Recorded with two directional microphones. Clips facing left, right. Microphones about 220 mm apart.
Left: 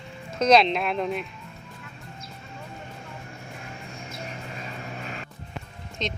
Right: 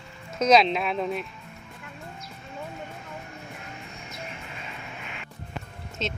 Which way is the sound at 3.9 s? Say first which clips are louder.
Left 2 dB; 30° left (ahead or behind).